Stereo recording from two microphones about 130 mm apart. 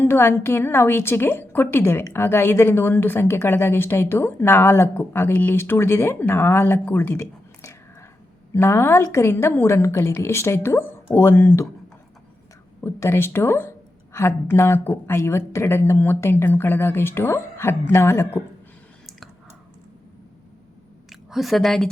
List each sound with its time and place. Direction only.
0.0 s a woman's voice: 15° left (ahead or behind)
12.8 s a woman's voice: 20° left (ahead or behind)
21.1 s a woman's voice: centre (ahead or behind)